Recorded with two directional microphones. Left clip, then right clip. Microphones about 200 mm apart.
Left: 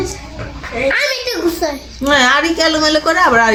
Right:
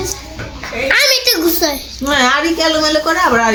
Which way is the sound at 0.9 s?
50° right (ahead or behind).